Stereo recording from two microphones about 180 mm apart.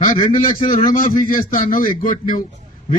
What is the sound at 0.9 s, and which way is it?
A man's voice, 50° left (ahead or behind).